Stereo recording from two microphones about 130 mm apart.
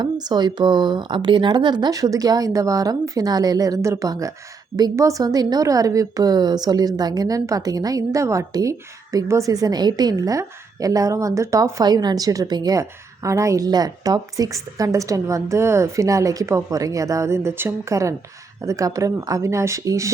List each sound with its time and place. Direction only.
0.0 s a woman's voice: 30° right (ahead or behind)